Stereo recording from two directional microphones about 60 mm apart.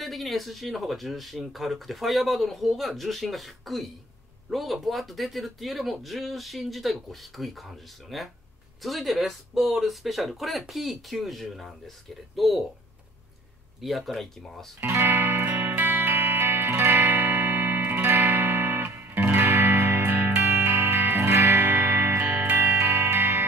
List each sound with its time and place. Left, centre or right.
0.0 s speech: centre
13.7 s speech: centre
15.0 s music: right